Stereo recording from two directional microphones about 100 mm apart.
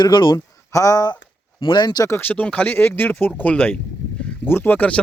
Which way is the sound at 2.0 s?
20° left (ahead or behind).